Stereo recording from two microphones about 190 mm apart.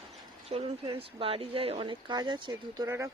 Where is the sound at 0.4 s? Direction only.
30° right (ahead or behind).